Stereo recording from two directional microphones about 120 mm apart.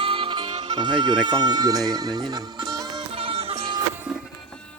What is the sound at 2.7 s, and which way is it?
Music, 35° right (ahead or behind).